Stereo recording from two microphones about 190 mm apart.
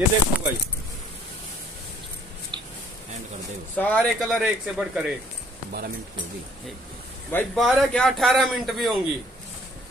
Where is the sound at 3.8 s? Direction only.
5° left (ahead or behind).